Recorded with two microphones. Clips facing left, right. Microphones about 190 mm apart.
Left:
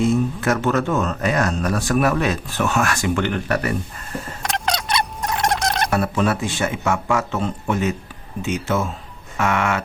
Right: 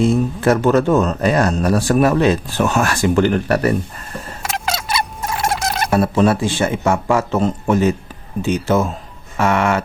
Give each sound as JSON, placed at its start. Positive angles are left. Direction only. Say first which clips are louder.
{"t": 0.0, "sound": "speech", "louder": "right 4 dB", "side_deg": -30}
{"t": 4.4, "sound": "a sound", "louder": "right 1 dB", "side_deg": -5}
{"t": 5.9, "sound": "speech", "louder": "right 9 dB", "side_deg": -30}